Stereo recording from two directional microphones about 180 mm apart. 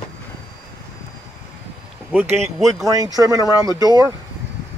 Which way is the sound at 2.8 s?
20° right (ahead or behind).